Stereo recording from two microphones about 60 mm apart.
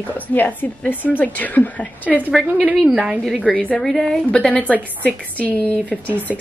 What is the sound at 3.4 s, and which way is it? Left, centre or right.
Speech, left.